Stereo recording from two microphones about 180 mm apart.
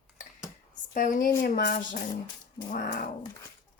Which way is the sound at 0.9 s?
50° left (ahead or behind).